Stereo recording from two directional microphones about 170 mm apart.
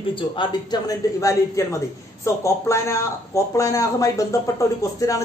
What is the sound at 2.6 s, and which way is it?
Speech, 15° left (ahead or behind).